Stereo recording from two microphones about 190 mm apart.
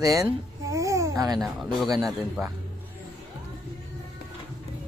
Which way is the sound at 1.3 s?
Centre (ahead or behind).